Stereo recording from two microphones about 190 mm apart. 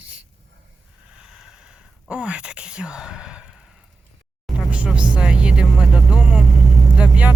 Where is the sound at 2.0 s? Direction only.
5° right (ahead or behind).